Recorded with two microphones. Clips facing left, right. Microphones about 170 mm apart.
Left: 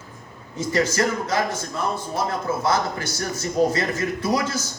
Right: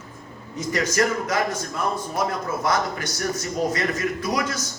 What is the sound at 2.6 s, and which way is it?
A man's voice, 30° left (ahead or behind).